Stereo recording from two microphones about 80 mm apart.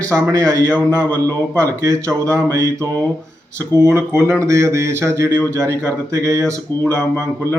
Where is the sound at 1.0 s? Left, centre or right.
Right.